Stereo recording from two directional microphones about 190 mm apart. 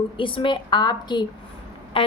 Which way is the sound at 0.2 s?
25° left (ahead or behind).